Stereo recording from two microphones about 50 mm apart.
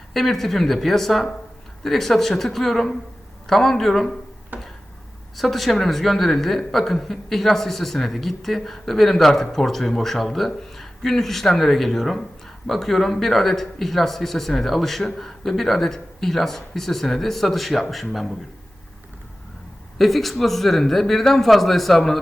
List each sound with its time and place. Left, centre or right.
0.1 s a woman's voice: centre
4.5 s tick-tock: right
5.4 s a woman's voice: centre
20.0 s a woman's voice: centre